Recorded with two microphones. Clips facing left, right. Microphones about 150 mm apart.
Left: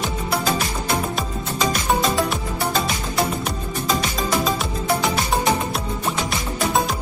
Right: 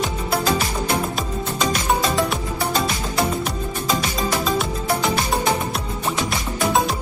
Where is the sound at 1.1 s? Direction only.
Centre (ahead or behind).